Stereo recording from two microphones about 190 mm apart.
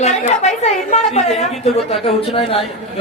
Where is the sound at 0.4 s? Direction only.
35° left (ahead or behind).